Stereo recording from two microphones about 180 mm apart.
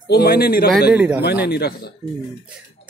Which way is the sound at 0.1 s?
60° left (ahead or behind).